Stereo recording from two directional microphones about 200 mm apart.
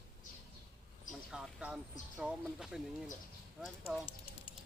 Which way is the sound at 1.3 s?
5° right (ahead or behind).